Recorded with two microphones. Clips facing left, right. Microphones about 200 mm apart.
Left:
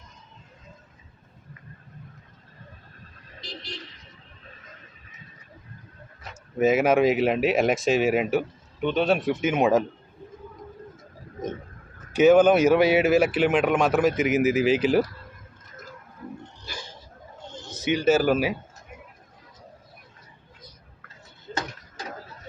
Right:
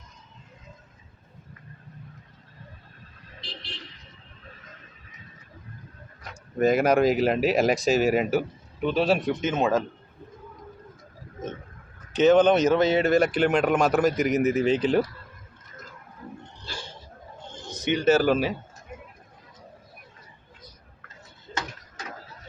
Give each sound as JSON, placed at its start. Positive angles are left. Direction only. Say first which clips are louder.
{"t": 3.4, "sound": "vehicle", "louder": "left 4 dB", "side_deg": 40}
{"t": 6.2, "sound": "speech", "louder": "left 1 dB", "side_deg": 5}
{"t": 12.1, "sound": "speech", "louder": "left 2 dB", "side_deg": 10}
{"t": 17.8, "sound": "speech", "louder": "even", "side_deg": 5}